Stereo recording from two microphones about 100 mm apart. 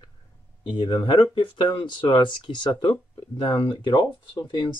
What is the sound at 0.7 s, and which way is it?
Speech, 50° left (ahead or behind).